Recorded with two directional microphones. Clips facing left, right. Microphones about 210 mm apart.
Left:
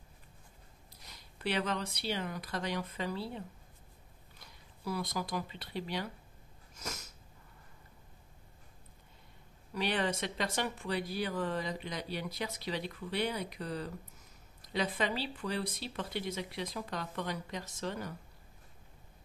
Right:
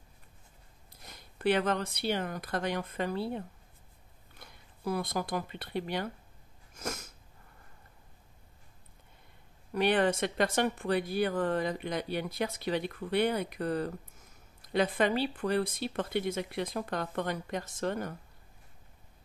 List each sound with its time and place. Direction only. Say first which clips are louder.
1.0 s speech: right 9 dB; 50° right (ahead or behind)
6.7 s cat: right 6 dB; 55° right (ahead or behind)
9.7 s speech: right 7 dB; 55° right (ahead or behind)